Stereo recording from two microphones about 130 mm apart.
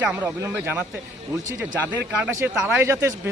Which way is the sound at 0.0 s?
10° right (ahead or behind).